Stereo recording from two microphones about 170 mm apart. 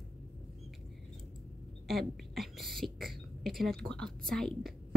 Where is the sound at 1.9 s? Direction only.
Centre (ahead or behind).